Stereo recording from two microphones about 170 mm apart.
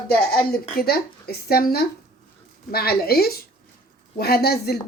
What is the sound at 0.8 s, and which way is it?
A woman's voice, 65° left (ahead or behind).